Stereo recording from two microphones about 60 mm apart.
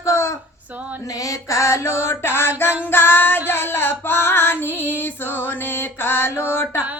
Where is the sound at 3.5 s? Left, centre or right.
Left.